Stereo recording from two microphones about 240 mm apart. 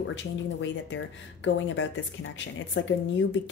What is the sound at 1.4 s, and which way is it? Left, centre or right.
Speech, left.